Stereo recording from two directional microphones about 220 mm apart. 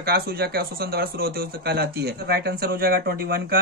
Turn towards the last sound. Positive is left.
turn(degrees=-45)  # may be behind; listen again after turning